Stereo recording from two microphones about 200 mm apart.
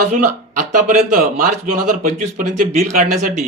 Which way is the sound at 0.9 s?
45° right (ahead or behind).